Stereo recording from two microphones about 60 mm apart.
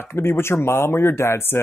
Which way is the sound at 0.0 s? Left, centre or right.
Left.